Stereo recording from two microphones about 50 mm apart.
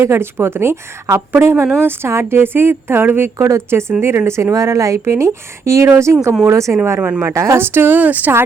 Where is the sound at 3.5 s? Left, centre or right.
Right.